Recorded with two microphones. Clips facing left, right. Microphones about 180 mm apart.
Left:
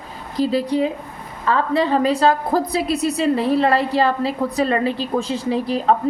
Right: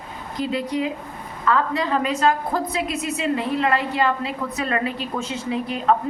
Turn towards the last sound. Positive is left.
turn(degrees=35)  # may be behind; listen again after turning